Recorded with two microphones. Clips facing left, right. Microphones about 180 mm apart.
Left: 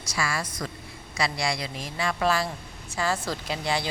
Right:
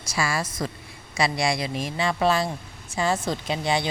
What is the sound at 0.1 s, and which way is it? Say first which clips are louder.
Speech: right 3 dB; 25° right (ahead or behind).